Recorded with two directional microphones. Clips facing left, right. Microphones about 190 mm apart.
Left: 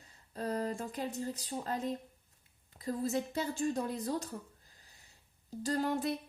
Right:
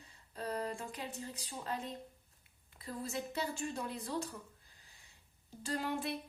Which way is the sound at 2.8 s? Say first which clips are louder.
Left 7 dB; 40° left (ahead or behind).